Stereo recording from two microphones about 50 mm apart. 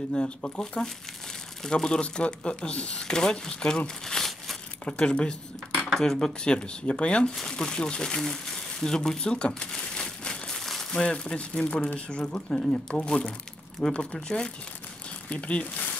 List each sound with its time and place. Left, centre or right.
0.1 s speech: centre
3.5 s crumpling: centre
4.8 s speech: centre
9.2 s crumpling: centre
10.9 s speech: centre
13.7 s speech: centre; by 15.7 s left